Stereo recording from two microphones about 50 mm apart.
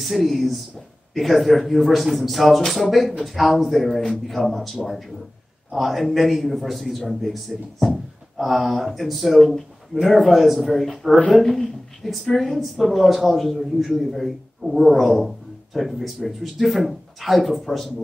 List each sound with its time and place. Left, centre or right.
0.0 s a woman's voice: centre